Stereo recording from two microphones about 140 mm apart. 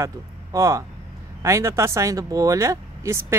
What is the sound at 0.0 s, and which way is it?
Speech, 20° right (ahead or behind).